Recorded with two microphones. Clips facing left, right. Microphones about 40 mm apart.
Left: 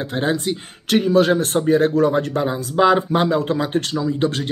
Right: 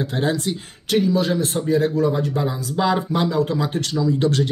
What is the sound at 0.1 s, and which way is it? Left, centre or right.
Speech, left.